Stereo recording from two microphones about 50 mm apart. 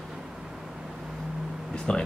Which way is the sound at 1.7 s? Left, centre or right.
Centre.